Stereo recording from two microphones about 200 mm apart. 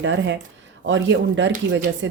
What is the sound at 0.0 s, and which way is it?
Speech, 65° right (ahead or behind).